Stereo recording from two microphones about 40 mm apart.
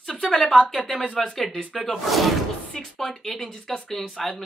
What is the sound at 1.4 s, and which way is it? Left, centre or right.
Speech, centre.